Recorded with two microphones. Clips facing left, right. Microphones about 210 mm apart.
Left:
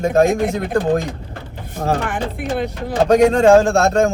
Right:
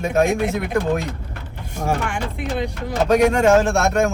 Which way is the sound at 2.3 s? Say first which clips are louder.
Left 2 dB; 55° left (ahead or behind).